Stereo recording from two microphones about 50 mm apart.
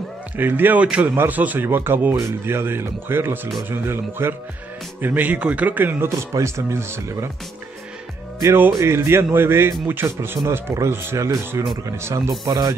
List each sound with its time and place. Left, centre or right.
0.4 s speech: right
1.3 s a man's voice: right
1.7 s speech: right
5.0 s a man's voice: right
6.0 s speech: right
8.7 s speech: right
10.5 s speech: right
11.1 s speech: right